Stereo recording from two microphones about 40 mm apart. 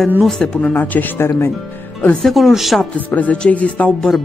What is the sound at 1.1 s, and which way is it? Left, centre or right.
Speech, left.